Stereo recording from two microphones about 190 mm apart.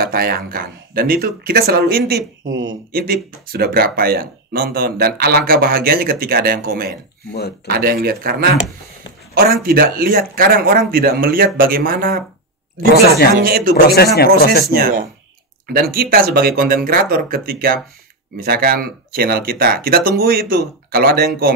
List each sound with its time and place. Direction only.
0.0 s speech: 50° right (ahead or behind); by 2.7 s 90° right
2.9 s speech: 50° right (ahead or behind)
13.4 s speech: 50° right (ahead or behind)
13.8 s speech: 55° left (ahead or behind)
14.7 s speech: 50° right (ahead or behind)